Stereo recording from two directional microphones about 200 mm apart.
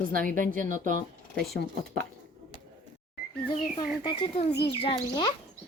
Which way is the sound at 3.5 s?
25° left (ahead or behind).